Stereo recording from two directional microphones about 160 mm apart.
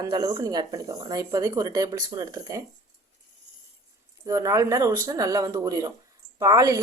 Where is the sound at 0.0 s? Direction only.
25° right (ahead or behind).